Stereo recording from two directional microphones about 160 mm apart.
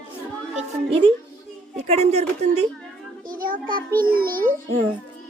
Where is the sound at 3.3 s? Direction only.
60° right (ahead or behind).